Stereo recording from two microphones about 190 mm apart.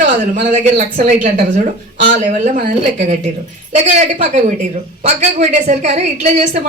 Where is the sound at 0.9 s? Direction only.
40° right (ahead or behind).